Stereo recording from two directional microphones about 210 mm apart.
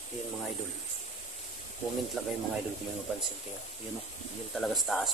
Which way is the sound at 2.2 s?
Centre (ahead or behind).